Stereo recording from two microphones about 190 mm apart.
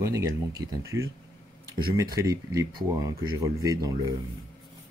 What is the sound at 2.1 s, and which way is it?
Speech, 20° right (ahead or behind).